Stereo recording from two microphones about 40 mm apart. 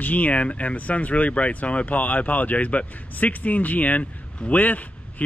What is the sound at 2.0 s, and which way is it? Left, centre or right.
Speech, left.